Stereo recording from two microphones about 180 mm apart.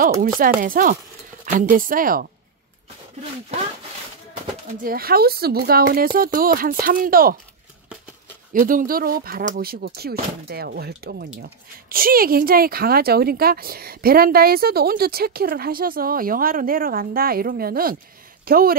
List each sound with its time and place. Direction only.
0.2 s speech: 50° right (ahead or behind)
4.8 s speech: 55° right (ahead or behind)
8.5 s speech: 50° right (ahead or behind)